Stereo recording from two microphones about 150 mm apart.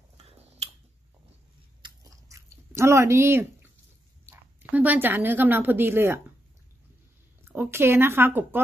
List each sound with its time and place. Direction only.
1.8 s chewing: 20° right (ahead or behind)
4.3 s a woman's voice: 10° right (ahead or behind)
7.4 s speech: 15° right (ahead or behind)